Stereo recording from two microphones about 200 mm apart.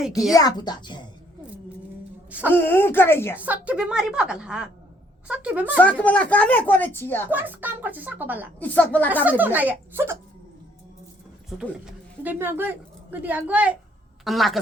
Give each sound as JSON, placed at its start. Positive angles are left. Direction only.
{"t": 0.3, "sound": "a woman's voice", "side_deg": 20}
{"t": 2.5, "sound": "speech", "side_deg": 10}
{"t": 3.3, "sound": "a woman's voice", "side_deg": -5}
{"t": 5.7, "sound": "speech", "side_deg": 5}
{"t": 7.3, "sound": "a woman's voice", "side_deg": -10}
{"t": 8.5, "sound": "speech", "side_deg": 10}
{"t": 9.2, "sound": "a woman's voice", "side_deg": -10}
{"t": 11.4, "sound": "a woman's voice", "side_deg": 0}